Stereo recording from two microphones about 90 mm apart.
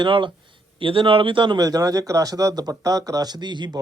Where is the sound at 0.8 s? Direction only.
75° right (ahead or behind); by 1.6 s 60° right (ahead or behind).